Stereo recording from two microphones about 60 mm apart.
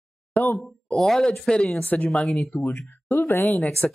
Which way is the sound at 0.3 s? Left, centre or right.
Left.